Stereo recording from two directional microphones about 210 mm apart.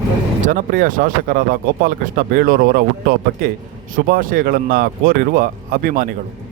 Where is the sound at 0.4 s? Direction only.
40° right (ahead or behind).